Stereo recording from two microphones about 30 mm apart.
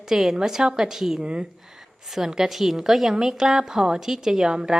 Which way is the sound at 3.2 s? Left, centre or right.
Centre.